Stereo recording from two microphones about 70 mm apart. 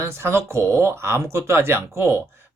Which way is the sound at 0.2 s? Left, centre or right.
Right.